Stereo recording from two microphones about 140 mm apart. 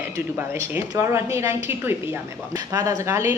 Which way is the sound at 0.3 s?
15° right (ahead or behind).